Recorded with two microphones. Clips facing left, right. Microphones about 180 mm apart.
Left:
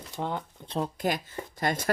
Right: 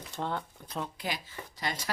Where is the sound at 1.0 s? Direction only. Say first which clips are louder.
Left 8 dB; 50° left (ahead or behind).